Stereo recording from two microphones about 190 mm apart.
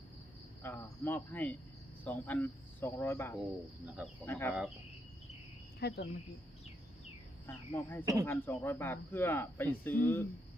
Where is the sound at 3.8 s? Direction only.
5° right (ahead or behind).